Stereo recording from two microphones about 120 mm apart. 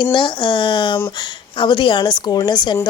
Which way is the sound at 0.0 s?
40° left (ahead or behind).